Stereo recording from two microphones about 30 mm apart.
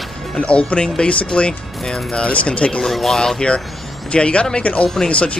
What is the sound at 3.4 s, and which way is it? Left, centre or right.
Speech, left.